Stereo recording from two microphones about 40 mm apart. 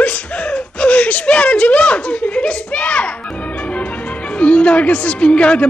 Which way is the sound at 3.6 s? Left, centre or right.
Left.